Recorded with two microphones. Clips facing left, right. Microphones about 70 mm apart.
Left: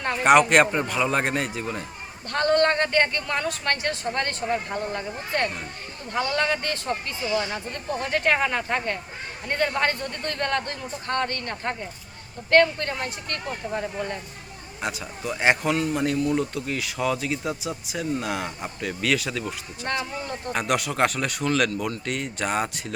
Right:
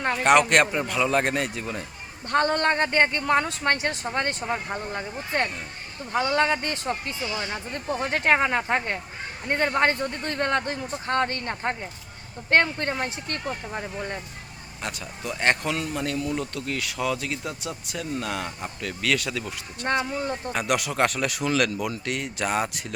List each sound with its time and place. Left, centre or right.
0.2 s speech: centre
2.3 s speech: right
14.8 s speech: centre